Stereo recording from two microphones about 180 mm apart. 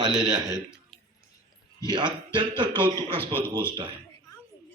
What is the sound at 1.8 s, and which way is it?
Speech, 25° right (ahead or behind).